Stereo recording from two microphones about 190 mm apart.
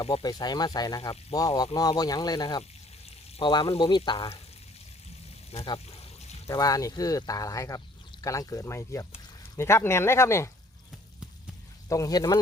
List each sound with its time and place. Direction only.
0.0 s speech: 25° left (ahead or behind)
5.5 s pour: 30° left (ahead or behind)
6.5 s speech: 20° left (ahead or behind)
11.9 s speech: 20° left (ahead or behind)